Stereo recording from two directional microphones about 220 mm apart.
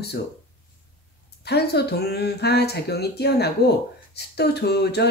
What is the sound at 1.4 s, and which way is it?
Speech, 50° left (ahead or behind).